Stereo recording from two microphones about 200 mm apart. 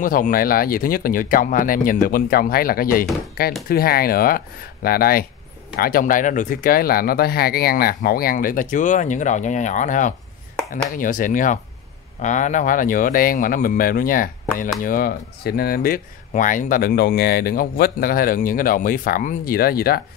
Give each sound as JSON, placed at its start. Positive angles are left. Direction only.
{"t": 0.0, "sound": "speech", "side_deg": 45}